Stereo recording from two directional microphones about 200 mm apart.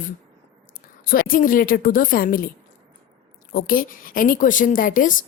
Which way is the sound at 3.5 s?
45° left (ahead or behind).